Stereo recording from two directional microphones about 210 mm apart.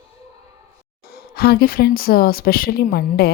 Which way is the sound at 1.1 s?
50° left (ahead or behind).